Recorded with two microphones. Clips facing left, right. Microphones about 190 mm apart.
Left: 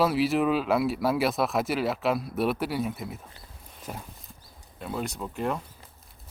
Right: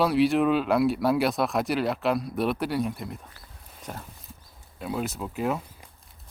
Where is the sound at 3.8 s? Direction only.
5° left (ahead or behind).